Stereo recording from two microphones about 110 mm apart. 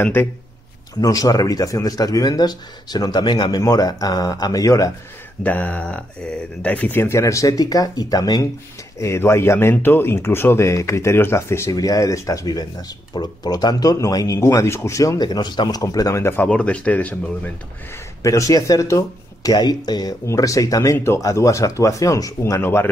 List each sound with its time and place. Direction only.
0.0 s speech: 20° left (ahead or behind)
1.0 s speech: 35° left (ahead or behind)
5.4 s speech: 15° left (ahead or behind); by 8.5 s 35° left (ahead or behind)
9.0 s speech: 25° left (ahead or behind)
15.2 s speech: 40° left (ahead or behind); by 16.4 s 25° left (ahead or behind)
16.4 s speech: 10° left (ahead or behind)
18.2 s speech: 30° left (ahead or behind)